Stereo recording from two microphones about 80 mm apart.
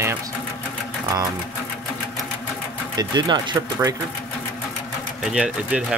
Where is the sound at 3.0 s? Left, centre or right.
Right.